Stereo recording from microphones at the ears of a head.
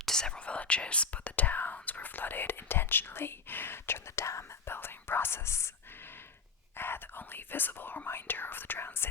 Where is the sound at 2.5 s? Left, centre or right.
Left.